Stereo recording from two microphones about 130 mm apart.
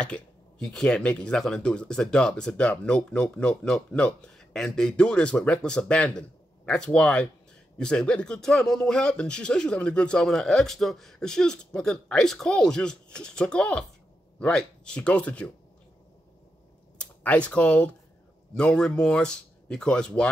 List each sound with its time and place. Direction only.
0.0 s speech: 5° left (ahead or behind)
17.2 s speech: 10° left (ahead or behind)